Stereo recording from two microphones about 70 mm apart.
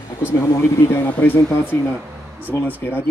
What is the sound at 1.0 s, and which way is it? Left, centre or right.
Speech, left.